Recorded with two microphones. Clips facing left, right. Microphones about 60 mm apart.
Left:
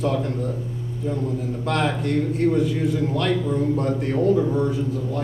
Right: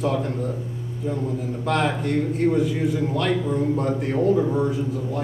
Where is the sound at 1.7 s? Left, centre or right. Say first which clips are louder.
Even; centre.